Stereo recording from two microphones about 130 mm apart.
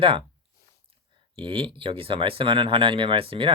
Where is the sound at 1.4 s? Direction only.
40° right (ahead or behind).